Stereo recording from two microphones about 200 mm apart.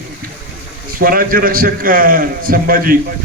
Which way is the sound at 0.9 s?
45° right (ahead or behind).